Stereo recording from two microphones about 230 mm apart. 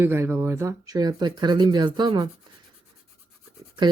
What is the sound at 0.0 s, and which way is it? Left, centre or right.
Speech, centre.